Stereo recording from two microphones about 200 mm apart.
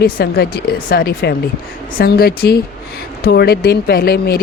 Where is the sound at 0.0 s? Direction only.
50° left (ahead or behind).